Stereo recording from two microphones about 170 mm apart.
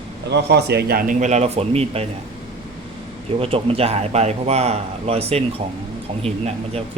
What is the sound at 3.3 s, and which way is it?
A man's voice, 35° right (ahead or behind).